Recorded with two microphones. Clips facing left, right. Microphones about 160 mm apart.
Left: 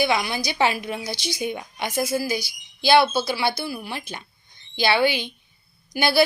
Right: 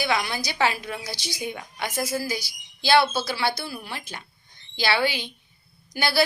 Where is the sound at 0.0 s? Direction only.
15° left (ahead or behind).